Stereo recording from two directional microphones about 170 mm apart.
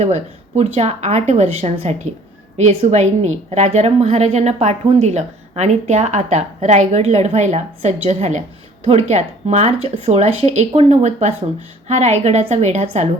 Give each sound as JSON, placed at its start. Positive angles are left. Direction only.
{"t": 0.0, "sound": "a woman's voice", "side_deg": -40}